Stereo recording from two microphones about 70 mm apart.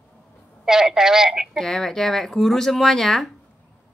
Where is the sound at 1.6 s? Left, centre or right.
Centre.